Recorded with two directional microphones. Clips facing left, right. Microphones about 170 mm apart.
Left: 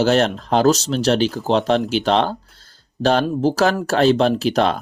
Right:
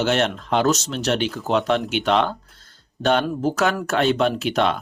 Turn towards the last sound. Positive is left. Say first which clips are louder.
# left 3 dB
turn(degrees=40)  # may be behind; listen again after turning